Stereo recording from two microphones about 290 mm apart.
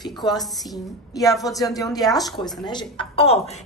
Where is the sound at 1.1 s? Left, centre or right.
Centre.